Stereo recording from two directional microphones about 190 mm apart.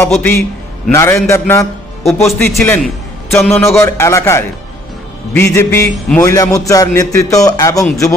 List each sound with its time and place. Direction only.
0.1 s a man's voice: 5° left (ahead or behind)